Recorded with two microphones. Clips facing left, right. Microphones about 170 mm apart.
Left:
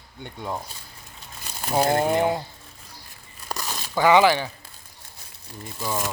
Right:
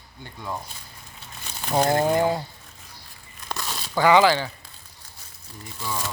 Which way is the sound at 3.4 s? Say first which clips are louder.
Even; 10° left (ahead or behind).